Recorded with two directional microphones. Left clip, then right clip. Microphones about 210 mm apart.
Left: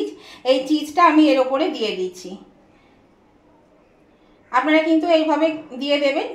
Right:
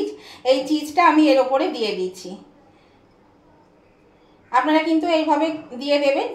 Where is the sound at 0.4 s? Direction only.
25° left (ahead or behind).